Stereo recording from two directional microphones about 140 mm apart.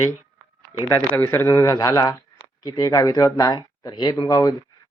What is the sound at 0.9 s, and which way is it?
Speech, 15° left (ahead or behind).